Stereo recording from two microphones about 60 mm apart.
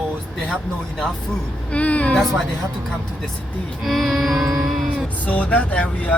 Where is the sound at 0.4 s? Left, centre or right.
Centre.